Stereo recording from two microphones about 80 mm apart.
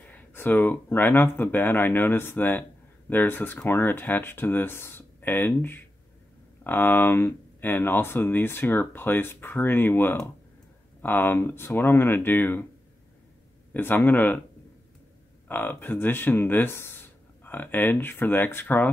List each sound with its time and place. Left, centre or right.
0.1 s speech: left
13.7 s speech: left
15.4 s speech: left